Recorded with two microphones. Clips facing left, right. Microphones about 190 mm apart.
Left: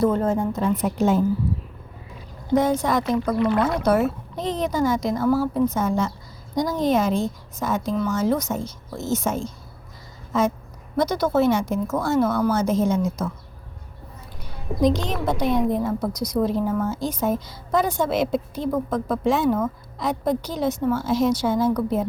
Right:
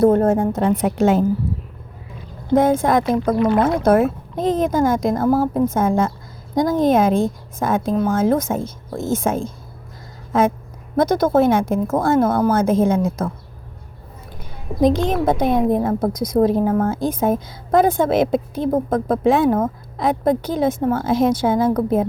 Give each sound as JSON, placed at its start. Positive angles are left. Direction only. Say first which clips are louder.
{"t": 0.5, "sound": "a woman's voice", "louder": "right 4 dB", "side_deg": -75}
{"t": 2.5, "sound": "speech", "louder": "right 5 dB", "side_deg": -50}
{"t": 10.9, "sound": "speech", "louder": "right 5 dB", "side_deg": -50}
{"t": 14.8, "sound": "speech", "louder": "right 5 dB", "side_deg": -55}